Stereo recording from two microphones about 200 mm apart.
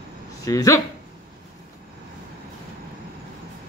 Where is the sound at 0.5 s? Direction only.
15° left (ahead or behind).